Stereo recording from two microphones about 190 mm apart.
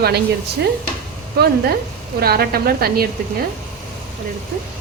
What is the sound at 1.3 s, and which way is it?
A woman's voice, 55° right (ahead or behind).